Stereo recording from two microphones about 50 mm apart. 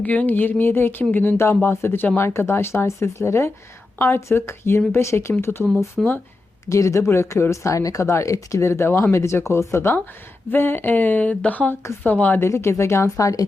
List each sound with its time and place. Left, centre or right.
0.0 s speech: left
1.7 s speech: left
3.9 s a woman's voice: left
6.0 s speech: centre
6.7 s speech: left
7.5 s speech: left
10.5 s speech: left
12.4 s speech: left